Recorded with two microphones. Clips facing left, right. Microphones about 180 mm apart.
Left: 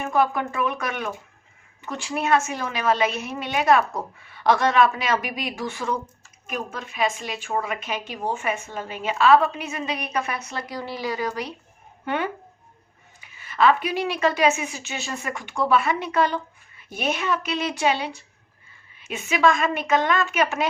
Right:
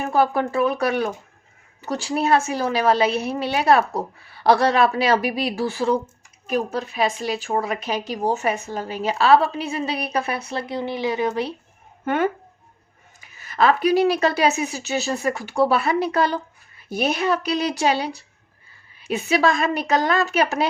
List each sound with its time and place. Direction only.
0.0 s speech: 35° right (ahead or behind)
12.0 s speech: 45° right (ahead or behind)